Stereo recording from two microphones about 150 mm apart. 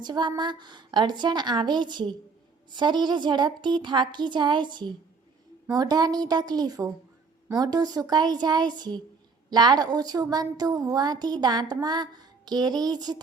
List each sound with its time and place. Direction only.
0.0 s a woman's voice: 30° right (ahead or behind)